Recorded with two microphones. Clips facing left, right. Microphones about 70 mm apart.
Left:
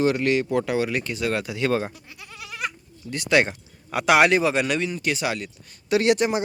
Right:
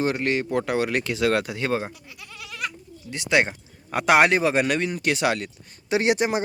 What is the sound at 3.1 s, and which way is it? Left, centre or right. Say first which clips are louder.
Speech: left 1 dB; centre.